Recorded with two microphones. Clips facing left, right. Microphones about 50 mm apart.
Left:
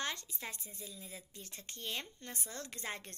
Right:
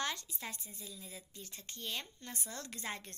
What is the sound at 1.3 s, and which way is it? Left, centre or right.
Speech, left.